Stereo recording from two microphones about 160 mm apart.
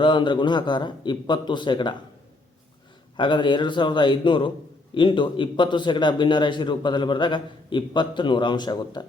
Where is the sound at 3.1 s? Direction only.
30° left (ahead or behind).